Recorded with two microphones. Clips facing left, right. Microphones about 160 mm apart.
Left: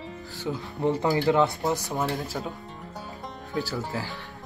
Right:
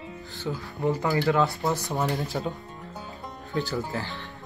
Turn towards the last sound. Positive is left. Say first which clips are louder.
# right 1 dB
turn(degrees=5)  # may be behind; listen again after turning